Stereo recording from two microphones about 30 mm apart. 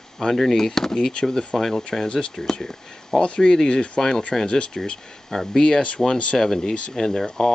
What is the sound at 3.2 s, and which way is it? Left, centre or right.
Speech, left.